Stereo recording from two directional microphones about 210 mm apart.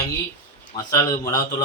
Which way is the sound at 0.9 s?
15° left (ahead or behind).